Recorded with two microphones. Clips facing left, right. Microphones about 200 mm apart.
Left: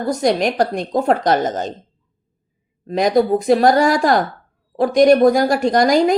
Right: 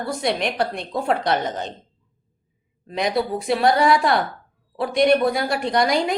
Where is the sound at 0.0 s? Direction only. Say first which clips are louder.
Left 6 dB; 40° left (ahead or behind).